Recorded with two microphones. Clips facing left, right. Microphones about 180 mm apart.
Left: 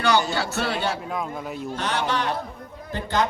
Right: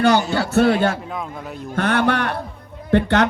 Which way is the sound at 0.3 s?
50° right (ahead or behind).